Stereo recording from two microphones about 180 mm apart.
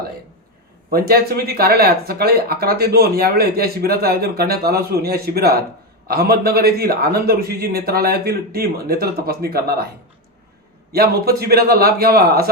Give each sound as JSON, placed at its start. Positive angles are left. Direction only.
{"t": 0.9, "sound": "speech", "side_deg": -60}
{"t": 10.9, "sound": "speech", "side_deg": -60}